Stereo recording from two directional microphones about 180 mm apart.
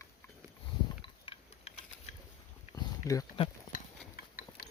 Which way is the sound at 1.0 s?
30° left (ahead or behind).